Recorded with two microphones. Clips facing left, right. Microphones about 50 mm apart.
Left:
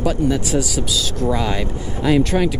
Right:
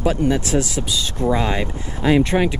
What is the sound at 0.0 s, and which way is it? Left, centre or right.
Speech, right.